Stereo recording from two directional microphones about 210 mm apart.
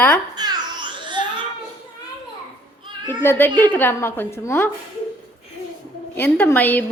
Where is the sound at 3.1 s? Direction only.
10° left (ahead or behind).